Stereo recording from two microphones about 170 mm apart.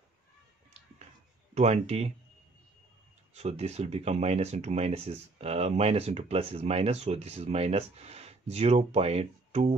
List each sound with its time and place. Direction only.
1.5 s speech: 40° right (ahead or behind)
3.3 s speech: 40° right (ahead or behind)